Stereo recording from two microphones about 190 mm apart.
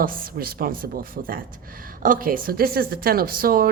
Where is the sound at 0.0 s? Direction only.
50° right (ahead or behind).